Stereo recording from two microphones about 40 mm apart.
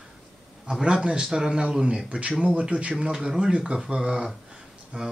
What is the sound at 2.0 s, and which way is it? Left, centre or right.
Speech, right.